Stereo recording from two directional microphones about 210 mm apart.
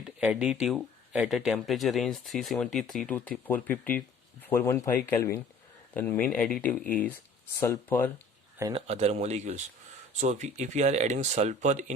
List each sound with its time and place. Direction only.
0.2 s speech: 5° right (ahead or behind)
8.7 s speech: 30° right (ahead or behind)